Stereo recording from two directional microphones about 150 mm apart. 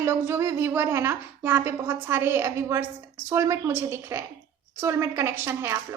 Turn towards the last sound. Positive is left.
turn(degrees=-15)  # may be behind; listen again after turning